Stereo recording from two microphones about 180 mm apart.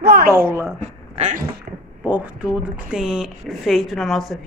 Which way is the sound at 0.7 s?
40° right (ahead or behind).